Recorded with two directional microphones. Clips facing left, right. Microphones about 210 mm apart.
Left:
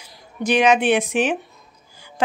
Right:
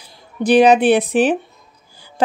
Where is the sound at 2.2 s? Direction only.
35° right (ahead or behind).